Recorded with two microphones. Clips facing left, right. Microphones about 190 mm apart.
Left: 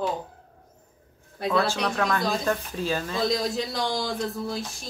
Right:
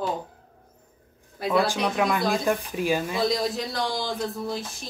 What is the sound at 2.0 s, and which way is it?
Speech, 10° right (ahead or behind).